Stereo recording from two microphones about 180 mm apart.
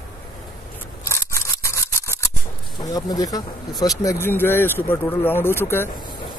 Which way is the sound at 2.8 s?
20° left (ahead or behind).